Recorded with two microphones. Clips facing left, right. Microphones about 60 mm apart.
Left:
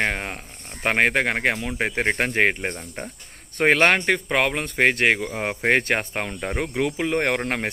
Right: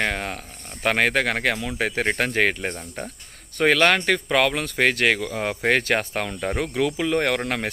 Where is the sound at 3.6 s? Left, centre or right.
Left.